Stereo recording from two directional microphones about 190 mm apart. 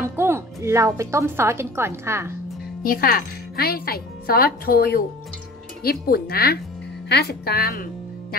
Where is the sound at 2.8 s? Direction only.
50° left (ahead or behind).